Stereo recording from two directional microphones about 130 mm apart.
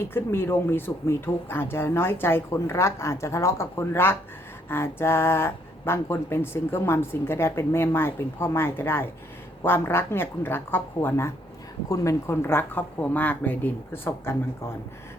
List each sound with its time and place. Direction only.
0.0 s speech: 20° left (ahead or behind)